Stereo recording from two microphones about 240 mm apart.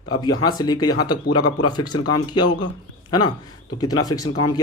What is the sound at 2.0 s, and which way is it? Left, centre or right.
Speech, left.